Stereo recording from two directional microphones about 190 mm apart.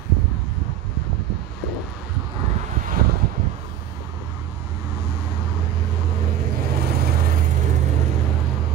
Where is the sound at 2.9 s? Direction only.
50° right (ahead or behind).